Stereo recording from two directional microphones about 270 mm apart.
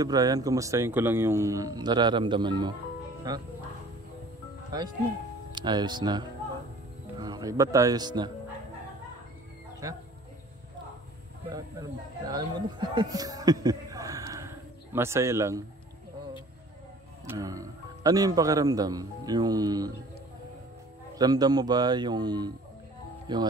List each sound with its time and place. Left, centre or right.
0.0 s speech: centre
5.5 s speech: centre
9.8 s speech: centre
12.3 s a man's voice: centre
17.3 s speech: centre
21.2 s speech: centre